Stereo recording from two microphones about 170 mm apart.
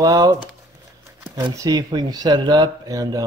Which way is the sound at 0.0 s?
20° right (ahead or behind).